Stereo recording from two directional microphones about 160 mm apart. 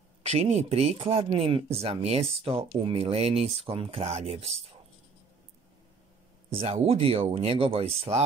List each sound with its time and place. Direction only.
0.2 s speech: 40° right (ahead or behind)
6.5 s speech: 40° right (ahead or behind)